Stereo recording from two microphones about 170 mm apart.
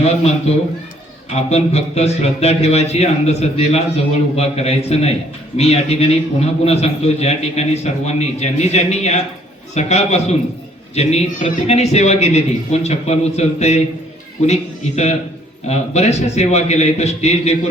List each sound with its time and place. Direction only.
0.0 s a man's voice: 40° left (ahead or behind)